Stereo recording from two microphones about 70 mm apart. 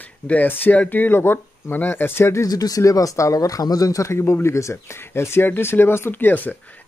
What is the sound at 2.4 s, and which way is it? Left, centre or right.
Speech, left.